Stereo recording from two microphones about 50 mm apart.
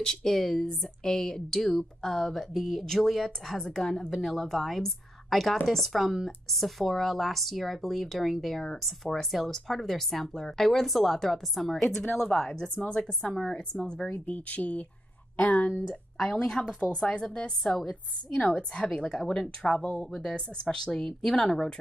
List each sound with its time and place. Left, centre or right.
0.0 s speech: centre
12.0 s speech: left
13.3 s speech: centre
14.1 s speech: left
15.9 s speech: centre
18.9 s speech: centre